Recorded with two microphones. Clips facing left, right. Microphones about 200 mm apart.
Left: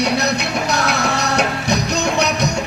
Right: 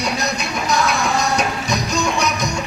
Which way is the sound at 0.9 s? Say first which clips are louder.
Even; 65° left (ahead or behind).